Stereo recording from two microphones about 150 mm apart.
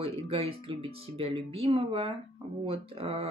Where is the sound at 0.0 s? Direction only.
40° right (ahead or behind).